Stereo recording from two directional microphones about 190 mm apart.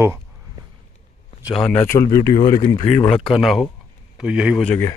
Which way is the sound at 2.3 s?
45° left (ahead or behind).